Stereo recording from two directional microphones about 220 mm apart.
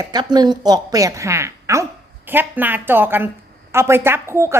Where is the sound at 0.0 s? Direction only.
20° right (ahead or behind).